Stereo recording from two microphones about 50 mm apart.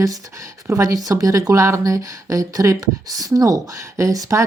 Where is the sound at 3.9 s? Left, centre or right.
Right.